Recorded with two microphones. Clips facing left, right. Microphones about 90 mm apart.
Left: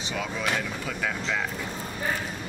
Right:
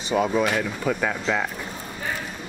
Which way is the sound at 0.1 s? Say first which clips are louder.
Right 11 dB; 40° right (ahead or behind).